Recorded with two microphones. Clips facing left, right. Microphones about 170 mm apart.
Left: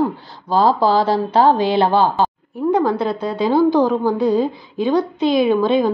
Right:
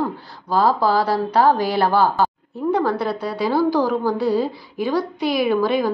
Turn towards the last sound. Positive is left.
turn(degrees=20)  # may be behind; listen again after turning